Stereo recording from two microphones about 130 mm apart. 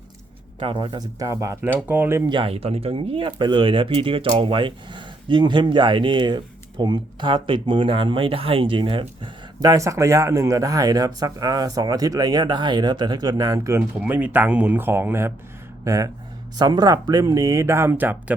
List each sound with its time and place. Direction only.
0.6 s speech: 40° right (ahead or behind); by 2.3 s 20° right (ahead or behind)
2.3 s speech: 45° right (ahead or behind); by 13.8 s 25° right (ahead or behind)
14.0 s speech: 10° right (ahead or behind)